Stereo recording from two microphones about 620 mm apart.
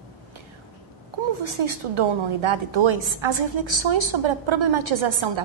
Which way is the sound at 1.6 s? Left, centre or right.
Right.